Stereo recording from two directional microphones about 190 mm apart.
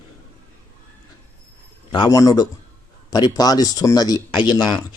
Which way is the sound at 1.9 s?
20° left (ahead or behind).